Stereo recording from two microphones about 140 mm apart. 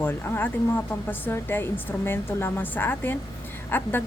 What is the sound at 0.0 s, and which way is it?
A woman's voice, 15° left (ahead or behind).